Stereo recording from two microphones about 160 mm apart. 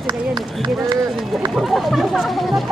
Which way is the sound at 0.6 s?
25° right (ahead or behind).